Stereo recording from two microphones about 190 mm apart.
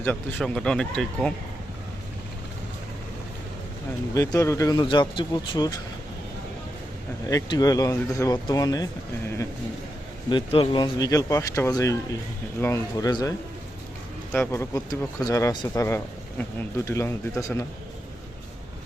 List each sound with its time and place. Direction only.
0.0 s speech: 10° left (ahead or behind)
4.1 s speech: 20° left (ahead or behind)
7.3 s speech: 20° left (ahead or behind)
14.3 s speech: 15° left (ahead or behind)